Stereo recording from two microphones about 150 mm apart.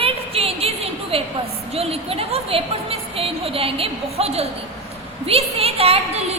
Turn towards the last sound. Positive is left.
turn(degrees=-45)  # may be behind; listen again after turning